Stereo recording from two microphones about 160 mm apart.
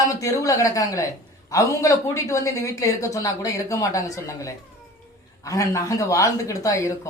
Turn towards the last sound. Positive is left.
turn(degrees=20)  # may be behind; listen again after turning